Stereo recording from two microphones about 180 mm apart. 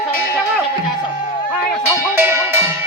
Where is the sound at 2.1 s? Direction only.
10° right (ahead or behind).